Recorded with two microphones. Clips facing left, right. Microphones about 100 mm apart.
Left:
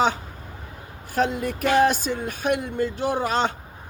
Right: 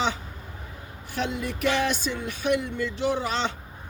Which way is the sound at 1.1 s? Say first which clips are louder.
Left 6 dB; 45° left (ahead or behind).